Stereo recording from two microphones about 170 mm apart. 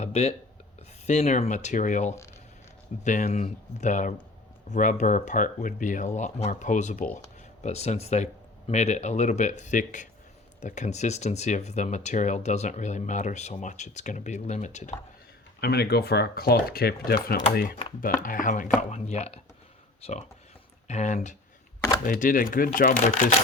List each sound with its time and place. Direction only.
0.0 s a sound: 40° left (ahead or behind)
0.8 s speech: 40° left (ahead or behind)
15.6 s speech: 70° left (ahead or behind)